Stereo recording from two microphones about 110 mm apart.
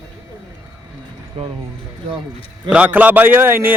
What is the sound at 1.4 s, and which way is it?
Speech, 65° right (ahead or behind).